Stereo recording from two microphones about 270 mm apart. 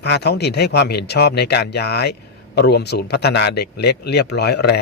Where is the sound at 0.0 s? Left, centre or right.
Left.